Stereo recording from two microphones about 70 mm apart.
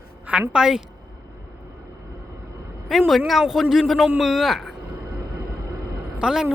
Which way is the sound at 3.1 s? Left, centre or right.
Centre.